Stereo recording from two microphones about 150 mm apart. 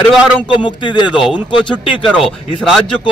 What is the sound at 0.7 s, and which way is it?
Speech, 30° left (ahead or behind).